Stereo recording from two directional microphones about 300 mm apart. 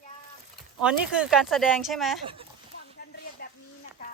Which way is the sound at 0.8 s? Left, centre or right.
Centre.